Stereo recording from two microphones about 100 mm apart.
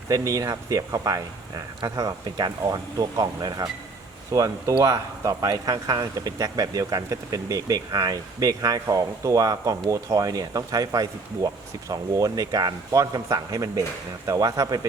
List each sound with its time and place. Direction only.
0.1 s speech: 35° right (ahead or behind)